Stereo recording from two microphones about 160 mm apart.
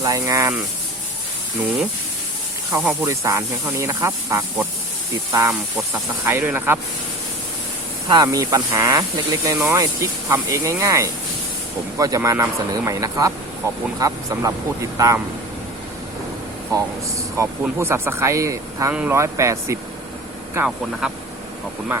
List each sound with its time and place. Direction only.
0.0 s speech: 20° right (ahead or behind)
2.7 s speech: 15° right (ahead or behind)
8.1 s speech: 25° right (ahead or behind)
16.7 s speech: 20° right (ahead or behind)
21.0 s speech: 5° right (ahead or behind)